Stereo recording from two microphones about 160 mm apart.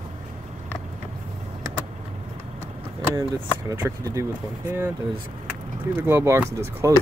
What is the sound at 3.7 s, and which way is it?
Speech, 20° right (ahead or behind).